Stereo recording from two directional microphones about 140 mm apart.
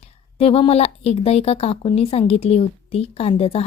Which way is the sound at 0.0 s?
45° left (ahead or behind).